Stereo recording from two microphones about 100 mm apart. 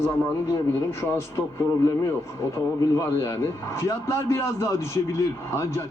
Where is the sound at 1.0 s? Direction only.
30° left (ahead or behind).